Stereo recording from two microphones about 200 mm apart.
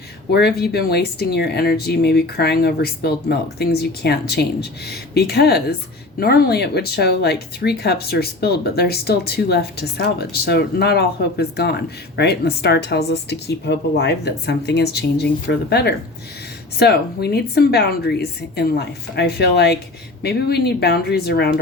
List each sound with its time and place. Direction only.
0.3 s speech: 55° left (ahead or behind)